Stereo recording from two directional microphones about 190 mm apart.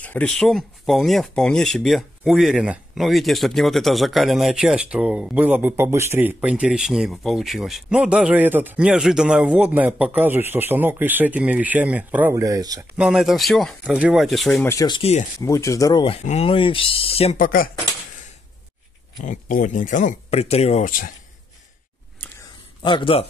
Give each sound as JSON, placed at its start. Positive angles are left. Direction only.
{"t": 0.0, "sound": "speech", "side_deg": 10}
{"t": 12.9, "sound": "speech", "side_deg": -5}
{"t": 15.0, "sound": "speech", "side_deg": 35}
{"t": 15.4, "sound": "speech", "side_deg": 15}
{"t": 17.4, "sound": "speech", "side_deg": 45}
{"t": 19.2, "sound": "speech", "side_deg": 45}
{"t": 22.8, "sound": "speech", "side_deg": 25}